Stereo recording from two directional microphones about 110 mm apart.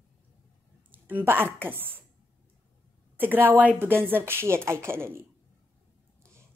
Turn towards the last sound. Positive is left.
turn(degrees=-20)  # may be behind; listen again after turning